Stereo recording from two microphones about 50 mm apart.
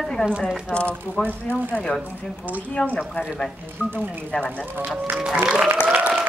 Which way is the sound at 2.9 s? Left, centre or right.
Centre.